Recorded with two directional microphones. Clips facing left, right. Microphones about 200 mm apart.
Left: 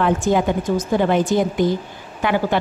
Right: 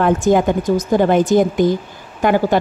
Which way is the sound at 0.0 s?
45° right (ahead or behind).